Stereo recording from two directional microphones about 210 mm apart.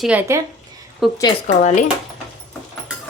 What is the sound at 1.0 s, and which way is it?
Stir, centre (ahead or behind).